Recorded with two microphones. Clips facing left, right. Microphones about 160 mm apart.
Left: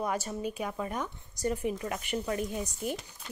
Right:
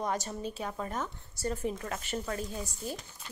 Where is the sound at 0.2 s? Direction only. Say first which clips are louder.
Left 3 dB; 10° left (ahead or behind).